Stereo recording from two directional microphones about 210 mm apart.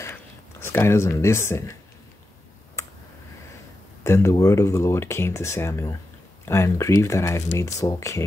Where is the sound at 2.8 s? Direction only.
15° left (ahead or behind).